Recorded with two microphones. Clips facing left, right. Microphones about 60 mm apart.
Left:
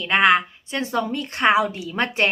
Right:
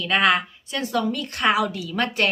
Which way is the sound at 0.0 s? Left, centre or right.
Left.